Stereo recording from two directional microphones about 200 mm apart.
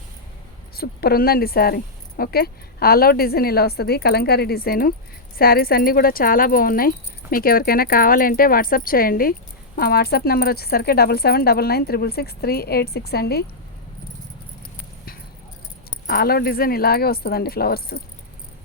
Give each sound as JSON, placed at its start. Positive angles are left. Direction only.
{"t": 0.8, "sound": "speech", "side_deg": 50}
{"t": 15.9, "sound": "speech", "side_deg": 50}